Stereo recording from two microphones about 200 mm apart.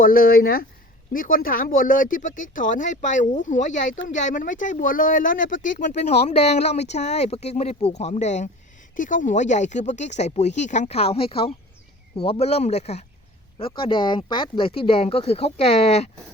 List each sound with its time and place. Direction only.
0.0 s speech: 45° left (ahead or behind); by 16.0 s 30° left (ahead or behind)